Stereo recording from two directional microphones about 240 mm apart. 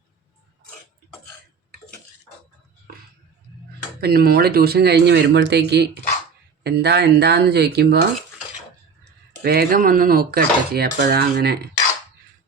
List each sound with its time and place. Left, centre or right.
4.0 s speech: right
9.4 s dishes: right